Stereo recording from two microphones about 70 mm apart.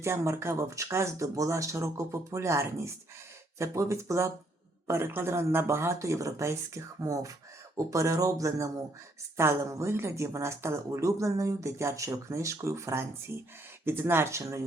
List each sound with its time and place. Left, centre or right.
0.0 s speech: right